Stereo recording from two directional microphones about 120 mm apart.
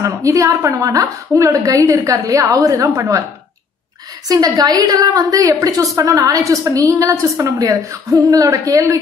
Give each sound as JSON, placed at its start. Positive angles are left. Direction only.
{"t": 0.0, "sound": "a woman's voice", "side_deg": -25}
{"t": 4.3, "sound": "a woman's voice", "side_deg": -30}